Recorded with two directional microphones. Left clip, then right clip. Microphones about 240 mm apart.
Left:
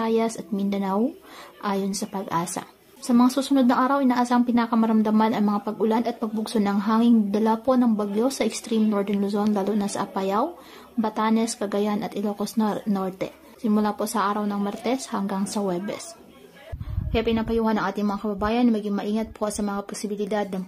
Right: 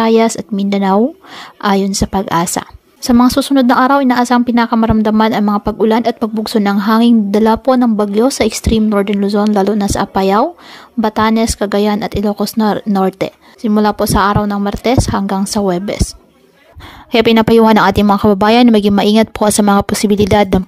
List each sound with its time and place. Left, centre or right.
0.0 s a woman's voice: right
17.1 s a woman's voice: right